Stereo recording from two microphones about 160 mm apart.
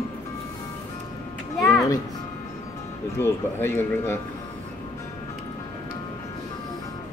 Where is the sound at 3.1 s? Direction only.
15° left (ahead or behind).